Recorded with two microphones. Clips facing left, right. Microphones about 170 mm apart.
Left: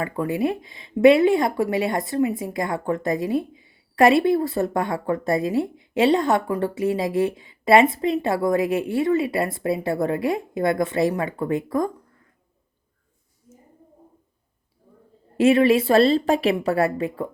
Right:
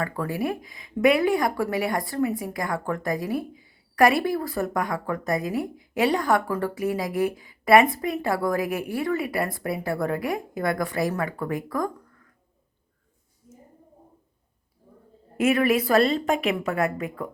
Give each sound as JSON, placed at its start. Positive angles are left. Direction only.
{"t": 0.0, "sound": "speech", "side_deg": 20}
{"t": 15.4, "sound": "speech", "side_deg": 30}